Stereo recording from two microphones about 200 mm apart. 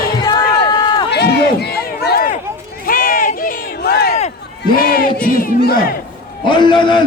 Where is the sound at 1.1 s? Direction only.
55° left (ahead or behind).